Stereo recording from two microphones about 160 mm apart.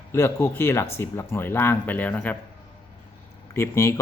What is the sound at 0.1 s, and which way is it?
A man's voice, 15° left (ahead or behind).